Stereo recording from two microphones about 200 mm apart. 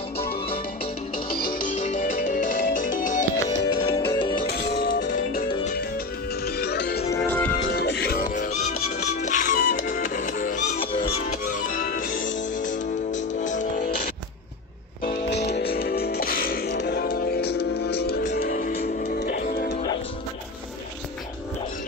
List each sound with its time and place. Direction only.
1.3 s music: 45° left (ahead or behind)
3.4 s music: 20° left (ahead or behind)
4.5 s music: 50° left (ahead or behind)
6.4 s music: 55° left (ahead or behind)
7.1 s music: 10° left (ahead or behind)
7.6 s music: 55° left (ahead or behind); by 14.0 s 40° left (ahead or behind)
15.2 s music: 60° left (ahead or behind)